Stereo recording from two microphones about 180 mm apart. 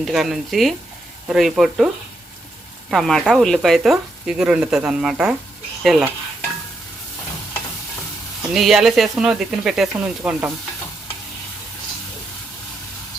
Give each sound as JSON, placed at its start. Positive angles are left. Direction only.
{"t": 0.0, "sound": "speech", "side_deg": 0}
{"t": 2.9, "sound": "speech", "side_deg": 0}
{"t": 8.5, "sound": "speech", "side_deg": 0}